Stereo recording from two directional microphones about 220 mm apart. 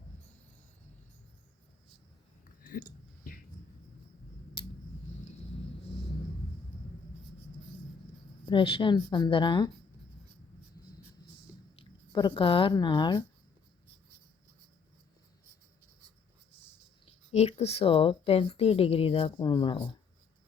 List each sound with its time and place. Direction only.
2.6 s a sound: 40° left (ahead or behind)
8.4 s a woman's voice: 25° left (ahead or behind)
11.8 s speech: 20° left (ahead or behind)
17.1 s a woman's voice: 30° left (ahead or behind)